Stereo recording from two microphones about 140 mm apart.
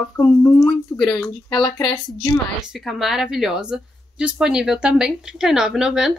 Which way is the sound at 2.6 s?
Centre (ahead or behind).